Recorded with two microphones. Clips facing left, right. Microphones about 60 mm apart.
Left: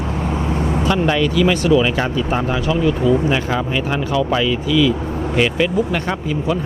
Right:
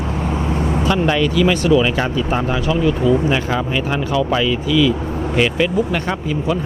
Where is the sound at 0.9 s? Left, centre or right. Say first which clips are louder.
Even; right.